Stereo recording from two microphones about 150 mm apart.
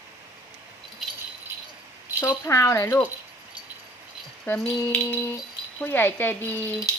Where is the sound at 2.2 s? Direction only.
20° left (ahead or behind).